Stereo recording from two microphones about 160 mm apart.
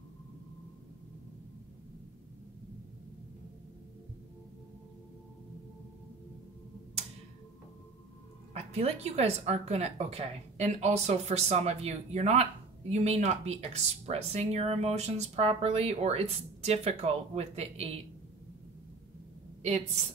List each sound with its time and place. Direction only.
8.5 s speech: 40° right (ahead or behind)